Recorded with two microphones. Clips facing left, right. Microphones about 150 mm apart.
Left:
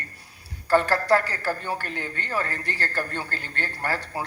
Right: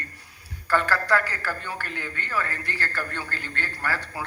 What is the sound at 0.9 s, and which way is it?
Speech, 35° left (ahead or behind).